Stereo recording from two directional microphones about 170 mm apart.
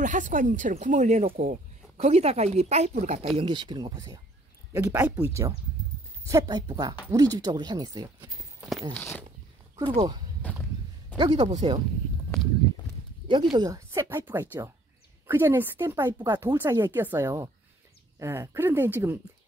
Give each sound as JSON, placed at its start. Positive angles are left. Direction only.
{"t": 0.0, "sound": "speech", "side_deg": -50}
{"t": 8.9, "sound": "speech", "side_deg": 10}
{"t": 9.8, "sound": "speech", "side_deg": -25}
{"t": 10.4, "sound": "speech", "side_deg": 10}
{"t": 11.1, "sound": "speech", "side_deg": -30}
{"t": 13.3, "sound": "speech", "side_deg": -30}